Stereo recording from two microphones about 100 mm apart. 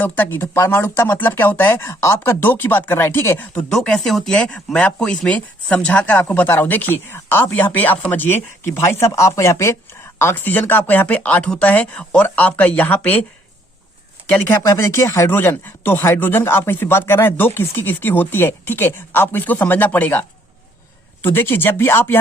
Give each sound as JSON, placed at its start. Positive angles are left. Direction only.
{"t": 0.0, "sound": "speech", "side_deg": 20}
{"t": 3.7, "sound": "speech", "side_deg": 5}
{"t": 14.3, "sound": "speech", "side_deg": 15}
{"t": 14.7, "sound": "speech", "side_deg": 25}